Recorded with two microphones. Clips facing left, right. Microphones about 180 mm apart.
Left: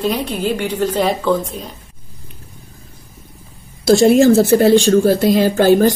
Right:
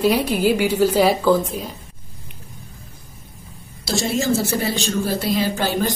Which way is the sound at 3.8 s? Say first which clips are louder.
Left 12 dB; 60° left (ahead or behind).